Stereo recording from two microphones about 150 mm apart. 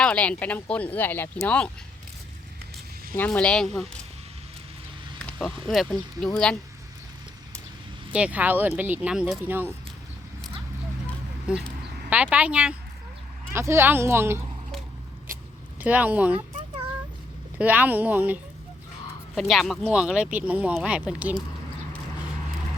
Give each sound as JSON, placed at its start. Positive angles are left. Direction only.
{"t": 0.0, "sound": "speech", "side_deg": 10}
{"t": 3.2, "sound": "speech", "side_deg": 5}
{"t": 5.2, "sound": "speech", "side_deg": 5}
{"t": 8.1, "sound": "speech", "side_deg": -10}
{"t": 11.5, "sound": "speech", "side_deg": -5}
{"t": 15.8, "sound": "speech", "side_deg": -10}
{"t": 17.6, "sound": "speech", "side_deg": -10}
{"t": 19.4, "sound": "speech", "side_deg": 0}